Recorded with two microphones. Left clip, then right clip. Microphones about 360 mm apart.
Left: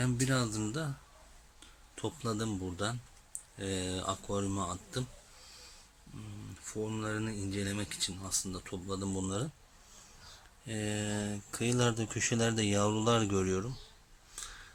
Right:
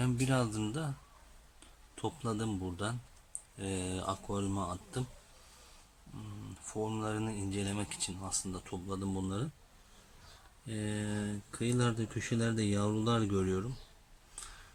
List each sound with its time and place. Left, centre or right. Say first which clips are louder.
0.0 s speech: even; centre
2.0 s speech: left 1 dB; centre
6.8 s speech: even; centre
10.7 s speech: left 3 dB; centre
14.4 s a sound: left 4 dB; centre